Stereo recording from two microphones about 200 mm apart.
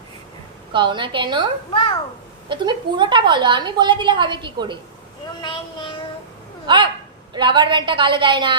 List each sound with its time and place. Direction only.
0.7 s a woman's voice: 25° right (ahead or behind)
1.7 s speech: 25° left (ahead or behind)
2.5 s a woman's voice: 25° right (ahead or behind)
5.4 s speech: 20° left (ahead or behind)
6.7 s a woman's voice: 25° right (ahead or behind)